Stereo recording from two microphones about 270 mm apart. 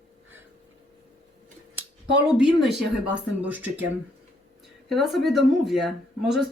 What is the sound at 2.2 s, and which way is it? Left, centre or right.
Speech, centre.